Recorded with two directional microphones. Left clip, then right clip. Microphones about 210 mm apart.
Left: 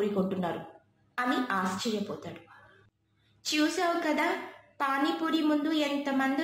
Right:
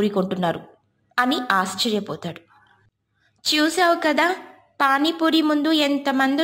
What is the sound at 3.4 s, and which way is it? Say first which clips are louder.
A woman's voice: right 10 dB; 35° right (ahead or behind).